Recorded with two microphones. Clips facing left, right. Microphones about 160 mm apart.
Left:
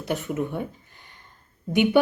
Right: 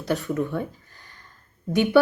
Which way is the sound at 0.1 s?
20° left (ahead or behind).